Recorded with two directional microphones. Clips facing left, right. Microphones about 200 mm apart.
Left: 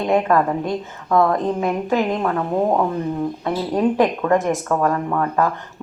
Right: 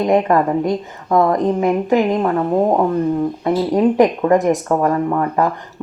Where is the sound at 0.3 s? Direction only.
15° right (ahead or behind).